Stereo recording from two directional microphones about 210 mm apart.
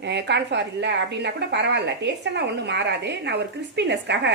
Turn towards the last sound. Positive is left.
turn(degrees=-55)  # may be behind; listen again after turning